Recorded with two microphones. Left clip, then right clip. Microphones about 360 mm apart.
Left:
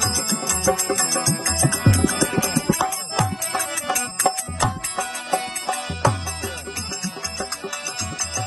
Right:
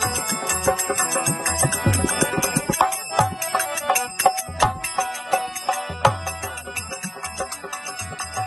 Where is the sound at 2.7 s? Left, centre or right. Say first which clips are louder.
Right 7 dB; centre.